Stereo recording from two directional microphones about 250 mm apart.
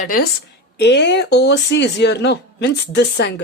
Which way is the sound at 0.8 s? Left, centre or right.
Left.